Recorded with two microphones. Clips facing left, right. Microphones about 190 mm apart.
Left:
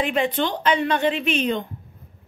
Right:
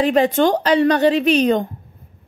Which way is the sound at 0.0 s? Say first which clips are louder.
Right 7 dB; 40° right (ahead or behind).